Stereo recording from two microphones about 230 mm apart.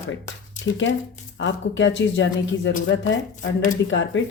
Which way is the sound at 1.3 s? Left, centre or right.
Left.